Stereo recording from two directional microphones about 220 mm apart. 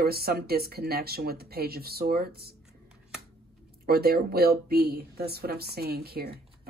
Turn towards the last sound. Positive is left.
turn(degrees=-45)  # may be behind; listen again after turning